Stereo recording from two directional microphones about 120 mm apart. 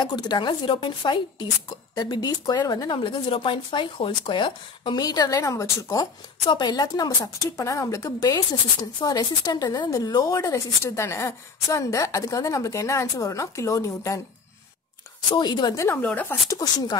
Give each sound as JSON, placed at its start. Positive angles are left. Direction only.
{"t": 0.0, "sound": "speech", "side_deg": 35}
{"t": 6.4, "sound": "speech", "side_deg": 40}
{"t": 15.3, "sound": "speech", "side_deg": 40}
{"t": 15.8, "sound": "a woman's voice", "side_deg": 15}
{"t": 16.4, "sound": "speech", "side_deg": 30}